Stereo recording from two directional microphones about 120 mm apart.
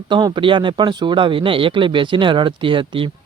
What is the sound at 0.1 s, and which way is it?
Speech, 35° right (ahead or behind).